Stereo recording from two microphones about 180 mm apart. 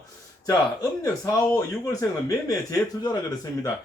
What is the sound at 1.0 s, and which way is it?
Speech, 15° left (ahead or behind).